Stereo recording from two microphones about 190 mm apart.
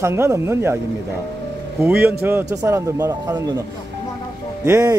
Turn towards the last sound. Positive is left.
turn(degrees=-15)  # may be behind; listen again after turning